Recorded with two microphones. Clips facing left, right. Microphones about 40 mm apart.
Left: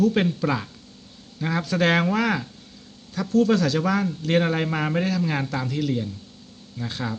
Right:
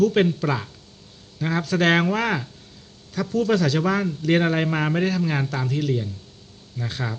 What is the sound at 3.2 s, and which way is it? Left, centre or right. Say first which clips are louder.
Speech: left 2 dB; right.